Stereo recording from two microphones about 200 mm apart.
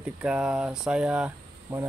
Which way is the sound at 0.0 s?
5° right (ahead or behind).